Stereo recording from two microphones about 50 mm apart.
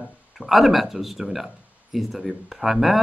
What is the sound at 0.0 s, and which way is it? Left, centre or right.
Speech, centre.